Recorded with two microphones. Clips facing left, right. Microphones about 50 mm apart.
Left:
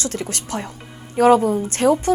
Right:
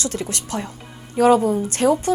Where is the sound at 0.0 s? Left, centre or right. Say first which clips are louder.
Even; left.